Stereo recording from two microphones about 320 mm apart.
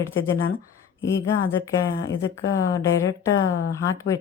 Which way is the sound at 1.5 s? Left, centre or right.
Centre.